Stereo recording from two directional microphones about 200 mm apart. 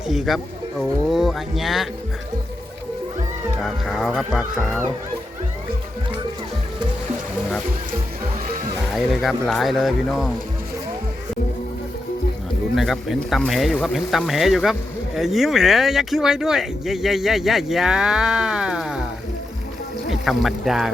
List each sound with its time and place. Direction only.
0.1 s speech: centre (ahead or behind)
3.6 s speech: centre (ahead or behind)
9.0 s speech: centre (ahead or behind)
12.7 s speech: centre (ahead or behind)
20.1 s speech: centre (ahead or behind)